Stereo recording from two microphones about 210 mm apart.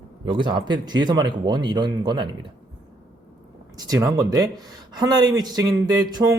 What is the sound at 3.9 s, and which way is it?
Speech, 15° right (ahead or behind).